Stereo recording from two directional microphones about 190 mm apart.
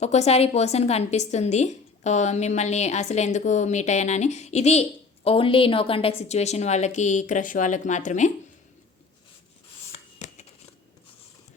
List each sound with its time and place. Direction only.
0.0 s a woman's voice: 35° left (ahead or behind)
10.2 s shuffling cards: 40° left (ahead or behind)